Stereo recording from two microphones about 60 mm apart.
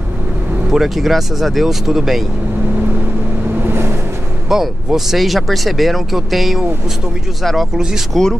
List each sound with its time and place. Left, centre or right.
0.7 s speech: centre
3.6 s vehicle: right
4.5 s speech: centre